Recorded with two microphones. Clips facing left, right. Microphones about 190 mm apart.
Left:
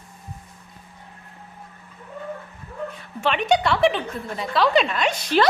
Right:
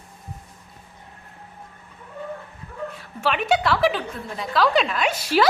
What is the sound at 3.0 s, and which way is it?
A woman's voice, 5° right (ahead or behind).